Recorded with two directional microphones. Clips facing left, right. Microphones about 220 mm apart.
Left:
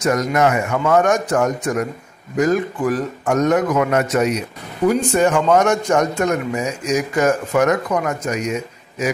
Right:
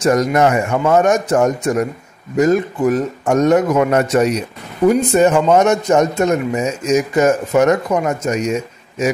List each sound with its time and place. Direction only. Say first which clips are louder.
0.0 s a man's voice: right 3 dB; 35° right (ahead or behind)
4.8 s a man's voice: right 4 dB; 20° right (ahead or behind)